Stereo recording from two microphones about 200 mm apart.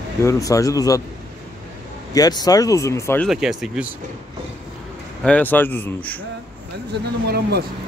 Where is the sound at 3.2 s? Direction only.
5° right (ahead or behind).